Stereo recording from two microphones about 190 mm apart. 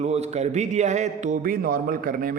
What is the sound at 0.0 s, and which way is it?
A man's voice, 35° right (ahead or behind).